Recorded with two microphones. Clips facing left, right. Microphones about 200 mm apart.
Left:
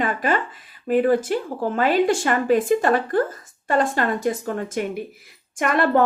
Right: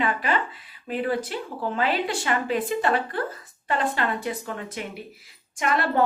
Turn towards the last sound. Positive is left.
turn(degrees=55)  # may be behind; listen again after turning